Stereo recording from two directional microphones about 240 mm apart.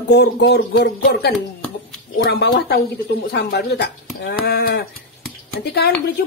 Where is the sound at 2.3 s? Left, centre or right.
Left.